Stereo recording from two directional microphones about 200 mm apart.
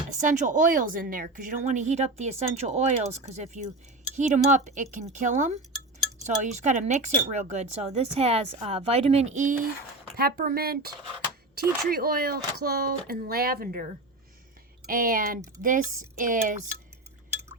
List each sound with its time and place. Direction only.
0.1 s speech: 40° right (ahead or behind)
10.2 s speech: 50° right (ahead or behind)